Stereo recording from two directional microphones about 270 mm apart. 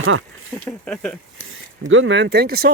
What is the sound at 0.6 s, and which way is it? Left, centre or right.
Speech, centre.